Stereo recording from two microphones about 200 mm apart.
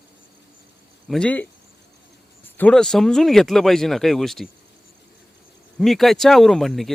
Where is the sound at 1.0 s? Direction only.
5° left (ahead or behind).